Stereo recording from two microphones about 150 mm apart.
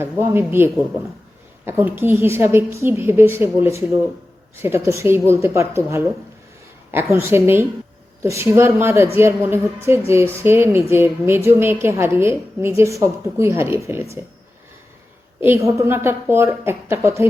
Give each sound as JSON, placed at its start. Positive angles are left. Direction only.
{"t": 0.0, "sound": "a woman's voice", "side_deg": -15}
{"t": 15.4, "sound": "a woman's voice", "side_deg": -15}